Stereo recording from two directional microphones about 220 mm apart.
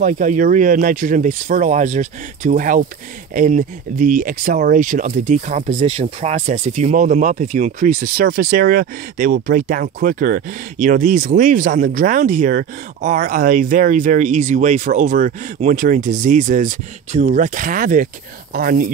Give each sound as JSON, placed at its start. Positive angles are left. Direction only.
{"t": 0.0, "sound": "speech", "side_deg": -35}